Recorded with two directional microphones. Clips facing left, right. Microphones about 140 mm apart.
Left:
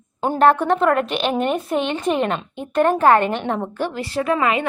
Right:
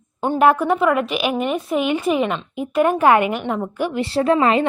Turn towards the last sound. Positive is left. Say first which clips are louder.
# right 4 dB
turn(degrees=-30)  # may be behind; listen again after turning